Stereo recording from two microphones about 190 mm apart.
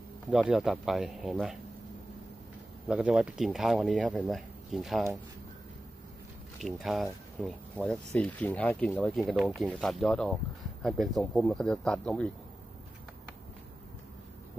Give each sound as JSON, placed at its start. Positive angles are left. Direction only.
{"t": 0.3, "sound": "speech", "side_deg": -5}
{"t": 2.9, "sound": "speech", "side_deg": -5}
{"t": 6.6, "sound": "speech", "side_deg": 0}